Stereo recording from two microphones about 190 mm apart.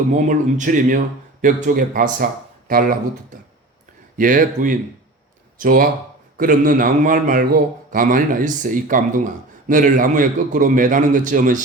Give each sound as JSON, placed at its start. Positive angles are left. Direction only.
{"t": 0.1, "sound": "a man's voice", "side_deg": -40}
{"t": 4.2, "sound": "a man's voice", "side_deg": -45}